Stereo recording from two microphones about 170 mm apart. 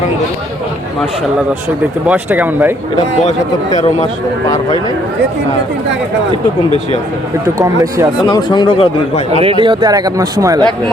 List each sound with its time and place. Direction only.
2.0 s speech: 10° right (ahead or behind)
7.6 s a man's voice: 20° right (ahead or behind)
8.3 s speech: 25° left (ahead or behind)
9.4 s a man's voice: 30° right (ahead or behind)